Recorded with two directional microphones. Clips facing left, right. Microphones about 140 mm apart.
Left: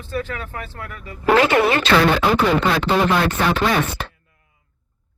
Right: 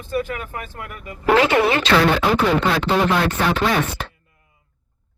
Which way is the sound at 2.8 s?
Centre (ahead or behind).